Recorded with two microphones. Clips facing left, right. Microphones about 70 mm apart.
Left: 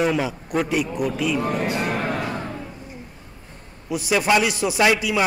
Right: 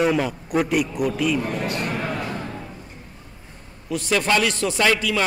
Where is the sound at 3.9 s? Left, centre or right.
Centre.